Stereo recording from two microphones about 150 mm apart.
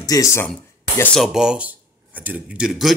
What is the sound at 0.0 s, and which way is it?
Speech, 20° left (ahead or behind).